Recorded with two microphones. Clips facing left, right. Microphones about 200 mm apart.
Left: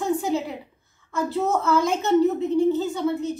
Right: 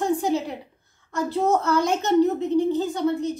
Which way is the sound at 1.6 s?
Centre (ahead or behind).